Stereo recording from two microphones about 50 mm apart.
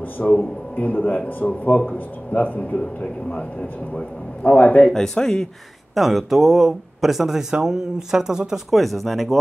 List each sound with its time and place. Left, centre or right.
0.2 s a man's voice: left
4.9 s speech: centre
5.9 s speech: centre
8.6 s speech: centre